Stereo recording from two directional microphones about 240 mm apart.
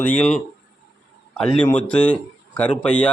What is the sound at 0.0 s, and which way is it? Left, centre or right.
A man's voice, centre.